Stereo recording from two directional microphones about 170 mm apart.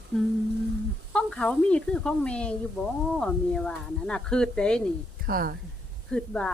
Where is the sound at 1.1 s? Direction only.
5° left (ahead or behind).